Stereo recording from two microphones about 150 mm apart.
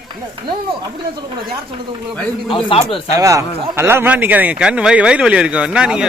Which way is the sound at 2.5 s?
35° left (ahead or behind).